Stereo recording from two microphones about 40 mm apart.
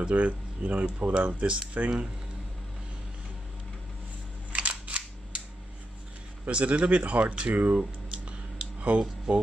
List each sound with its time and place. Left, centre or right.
0.0 s speech: right
4.5 s cap gun: right
6.5 s speech: right
8.3 s a sound: right
9.3 s speech: right